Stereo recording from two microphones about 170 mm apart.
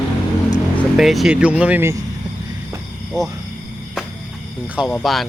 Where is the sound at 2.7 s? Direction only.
20° right (ahead or behind).